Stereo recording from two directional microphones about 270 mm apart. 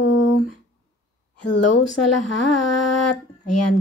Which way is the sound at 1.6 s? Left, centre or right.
Left.